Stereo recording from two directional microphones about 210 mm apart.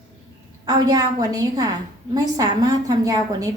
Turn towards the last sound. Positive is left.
turn(degrees=-15)  # may be behind; listen again after turning